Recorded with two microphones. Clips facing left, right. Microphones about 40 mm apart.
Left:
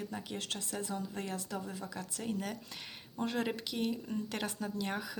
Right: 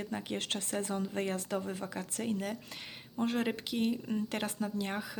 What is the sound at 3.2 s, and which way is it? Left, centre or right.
A woman's voice, right.